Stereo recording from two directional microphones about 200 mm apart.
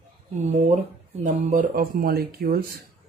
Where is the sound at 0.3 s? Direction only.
35° right (ahead or behind).